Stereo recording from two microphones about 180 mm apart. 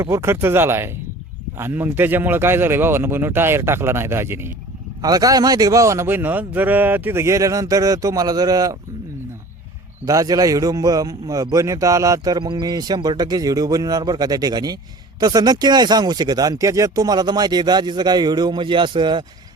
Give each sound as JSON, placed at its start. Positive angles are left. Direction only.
{"t": 0.0, "sound": "a man's voice", "side_deg": -15}
{"t": 10.1, "sound": "a man's voice", "side_deg": -20}